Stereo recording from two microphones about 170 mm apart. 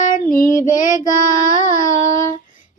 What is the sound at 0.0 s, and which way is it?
Child singing, 50° left (ahead or behind).